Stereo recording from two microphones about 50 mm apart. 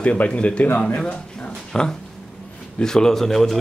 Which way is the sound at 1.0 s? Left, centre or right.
Centre.